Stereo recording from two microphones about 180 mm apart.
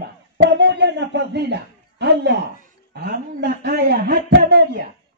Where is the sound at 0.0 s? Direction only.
75° right (ahead or behind).